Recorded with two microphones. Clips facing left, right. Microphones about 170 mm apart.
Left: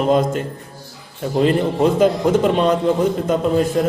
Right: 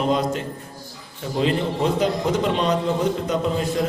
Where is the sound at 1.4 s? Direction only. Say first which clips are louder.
Left 5 dB; 50° left (ahead or behind).